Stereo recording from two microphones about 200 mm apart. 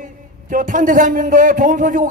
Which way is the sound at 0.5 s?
40° right (ahead or behind).